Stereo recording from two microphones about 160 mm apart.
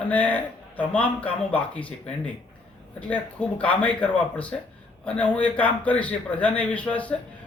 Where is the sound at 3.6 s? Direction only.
10° left (ahead or behind).